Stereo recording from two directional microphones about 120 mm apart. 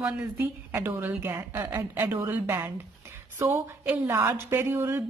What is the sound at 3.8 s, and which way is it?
A woman's voice, 15° right (ahead or behind).